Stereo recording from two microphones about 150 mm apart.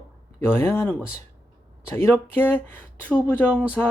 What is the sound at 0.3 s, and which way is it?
Speech, 15° left (ahead or behind).